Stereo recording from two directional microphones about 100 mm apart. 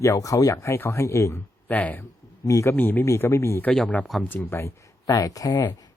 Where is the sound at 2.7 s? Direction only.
20° left (ahead or behind).